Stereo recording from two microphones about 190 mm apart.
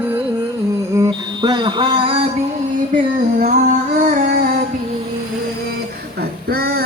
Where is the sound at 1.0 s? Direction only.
20° right (ahead or behind).